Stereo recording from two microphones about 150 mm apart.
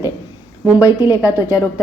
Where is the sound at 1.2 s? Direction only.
20° left (ahead or behind).